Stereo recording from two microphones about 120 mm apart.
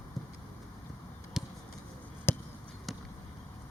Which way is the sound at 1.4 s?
5° right (ahead or behind).